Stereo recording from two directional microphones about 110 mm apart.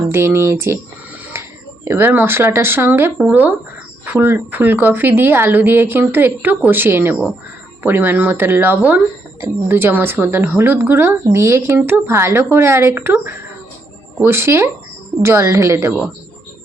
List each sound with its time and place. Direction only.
0.1 s a woman's voice: 25° right (ahead or behind)